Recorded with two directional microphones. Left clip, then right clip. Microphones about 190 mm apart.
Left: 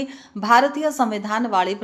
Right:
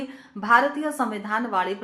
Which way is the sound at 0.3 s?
30° left (ahead or behind).